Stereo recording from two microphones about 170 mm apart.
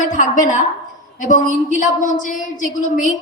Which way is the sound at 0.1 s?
50° left (ahead or behind).